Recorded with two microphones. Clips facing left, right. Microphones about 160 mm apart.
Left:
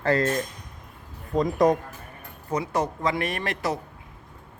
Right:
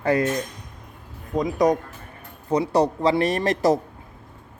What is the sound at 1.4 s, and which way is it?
Speech, centre (ahead or behind).